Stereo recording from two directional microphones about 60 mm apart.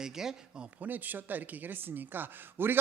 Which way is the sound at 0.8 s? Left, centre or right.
Right.